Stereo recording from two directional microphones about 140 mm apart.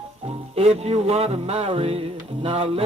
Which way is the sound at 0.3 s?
45° right (ahead or behind).